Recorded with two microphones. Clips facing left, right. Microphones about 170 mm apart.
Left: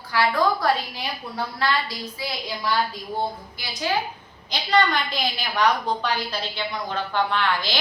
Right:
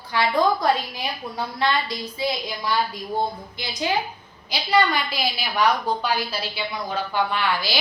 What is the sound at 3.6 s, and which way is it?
Speech, 20° right (ahead or behind).